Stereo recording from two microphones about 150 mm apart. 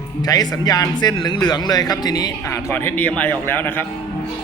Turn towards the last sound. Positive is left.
turn(degrees=15)  # may be behind; listen again after turning